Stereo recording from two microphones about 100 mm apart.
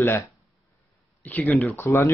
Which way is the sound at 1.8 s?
30° left (ahead or behind).